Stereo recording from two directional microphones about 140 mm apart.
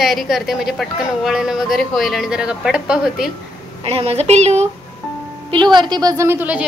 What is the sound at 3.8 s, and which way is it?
Speech, 45° right (ahead or behind).